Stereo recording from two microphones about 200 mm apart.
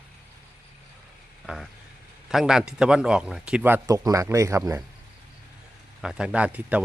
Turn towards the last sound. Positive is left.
turn(degrees=-5)  # may be behind; listen again after turning